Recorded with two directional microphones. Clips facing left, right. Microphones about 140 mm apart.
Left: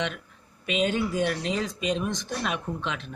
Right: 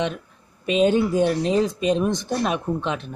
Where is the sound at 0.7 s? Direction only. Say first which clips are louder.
Right 7 dB; 35° right (ahead or behind).